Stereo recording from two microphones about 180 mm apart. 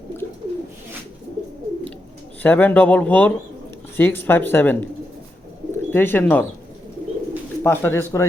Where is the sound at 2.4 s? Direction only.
10° left (ahead or behind).